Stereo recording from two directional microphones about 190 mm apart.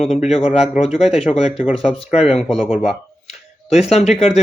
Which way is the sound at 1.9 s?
30° left (ahead or behind).